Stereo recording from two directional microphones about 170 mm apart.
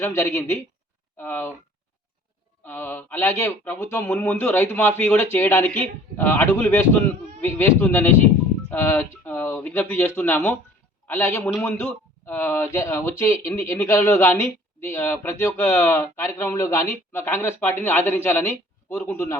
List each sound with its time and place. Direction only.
0.0 s speech: 15° left (ahead or behind)
2.6 s a man's voice: 10° left (ahead or behind)